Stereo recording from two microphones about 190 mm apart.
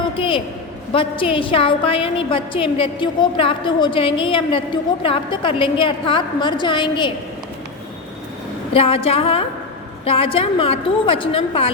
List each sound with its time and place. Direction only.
0.2 s a woman's voice: 25° left (ahead or behind)
8.7 s a woman's voice: 30° left (ahead or behind)